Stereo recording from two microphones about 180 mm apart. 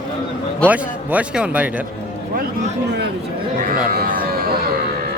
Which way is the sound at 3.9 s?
55° right (ahead or behind).